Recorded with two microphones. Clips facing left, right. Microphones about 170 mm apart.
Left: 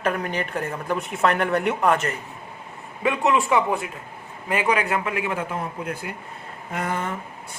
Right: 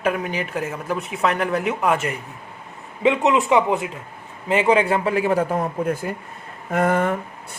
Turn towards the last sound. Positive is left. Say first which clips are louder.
# right 8 dB
turn(degrees=-55)  # may be behind; listen again after turning